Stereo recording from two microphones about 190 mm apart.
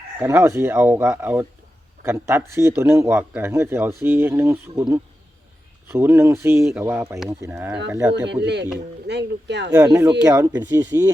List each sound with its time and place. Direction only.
0.2 s a man's voice: 10° right (ahead or behind)
5.9 s a man's voice: 15° right (ahead or behind)
9.0 s speech: 65° right (ahead or behind)
9.7 s a man's voice: 15° right (ahead or behind)